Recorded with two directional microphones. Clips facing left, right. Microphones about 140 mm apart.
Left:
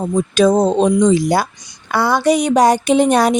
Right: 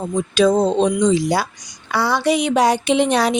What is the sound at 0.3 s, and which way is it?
A woman's voice, 45° left (ahead or behind).